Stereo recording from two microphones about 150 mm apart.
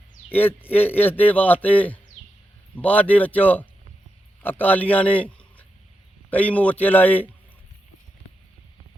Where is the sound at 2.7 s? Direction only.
10° left (ahead or behind).